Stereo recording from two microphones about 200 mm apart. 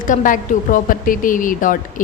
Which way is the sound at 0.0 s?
40° left (ahead or behind).